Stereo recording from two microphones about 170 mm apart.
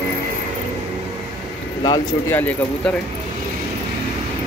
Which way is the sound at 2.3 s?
10° left (ahead or behind).